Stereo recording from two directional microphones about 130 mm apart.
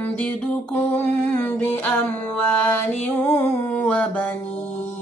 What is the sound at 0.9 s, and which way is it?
Music, 15° left (ahead or behind).